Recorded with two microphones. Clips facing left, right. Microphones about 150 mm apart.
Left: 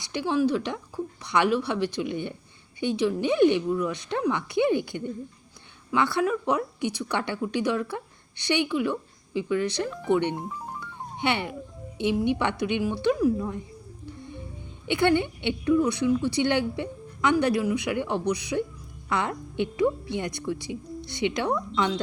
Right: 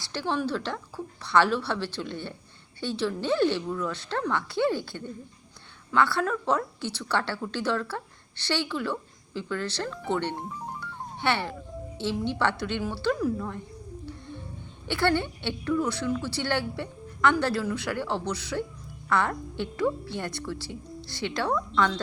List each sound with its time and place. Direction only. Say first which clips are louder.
0.0 s a woman's voice: left 5 dB; 15° left (ahead or behind)
14.8 s a woman's voice: left 3 dB; 20° left (ahead or behind)